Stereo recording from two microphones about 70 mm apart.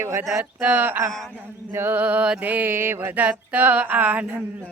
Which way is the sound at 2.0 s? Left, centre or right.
Centre.